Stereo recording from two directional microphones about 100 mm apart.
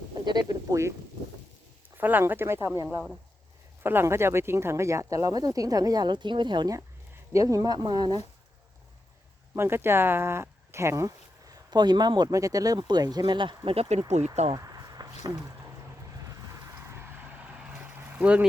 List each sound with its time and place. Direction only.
0.3 s speech: 40° right (ahead or behind)
2.0 s speech: 20° right (ahead or behind); by 6.7 s 50° right (ahead or behind)
7.3 s speech: 35° right (ahead or behind)
9.6 s speech: 25° right (ahead or behind); by 13.6 s 55° right (ahead or behind)
13.7 s speech: 85° right
14.5 s a sound: 40° right (ahead or behind)
16.3 s vehicle: 25° right (ahead or behind)